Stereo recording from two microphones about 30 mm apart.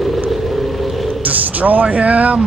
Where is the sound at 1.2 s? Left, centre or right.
Right.